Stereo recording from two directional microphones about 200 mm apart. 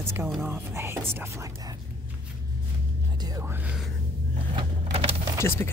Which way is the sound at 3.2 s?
15° right (ahead or behind).